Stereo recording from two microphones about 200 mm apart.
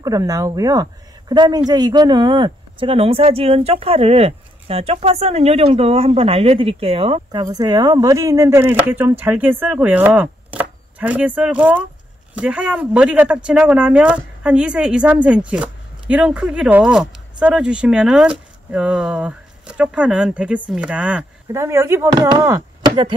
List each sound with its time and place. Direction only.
0.0 s speech: 15° right (ahead or behind)